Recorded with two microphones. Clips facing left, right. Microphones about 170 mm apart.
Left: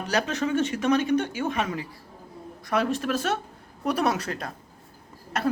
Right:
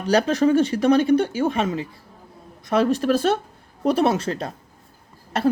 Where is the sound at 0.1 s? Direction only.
35° right (ahead or behind).